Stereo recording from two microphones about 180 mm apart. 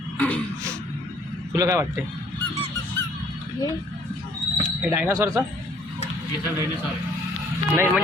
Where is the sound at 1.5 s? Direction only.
20° right (ahead or behind).